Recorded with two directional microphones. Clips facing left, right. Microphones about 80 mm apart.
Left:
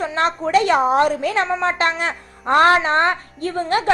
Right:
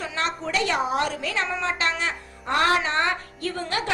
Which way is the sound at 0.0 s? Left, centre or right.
Left.